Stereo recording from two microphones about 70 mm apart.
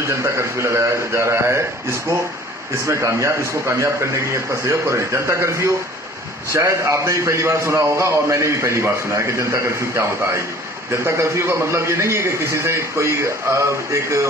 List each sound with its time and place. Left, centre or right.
0.0 s a man's voice: right